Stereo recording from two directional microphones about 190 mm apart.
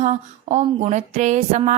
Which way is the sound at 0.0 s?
35° right (ahead or behind).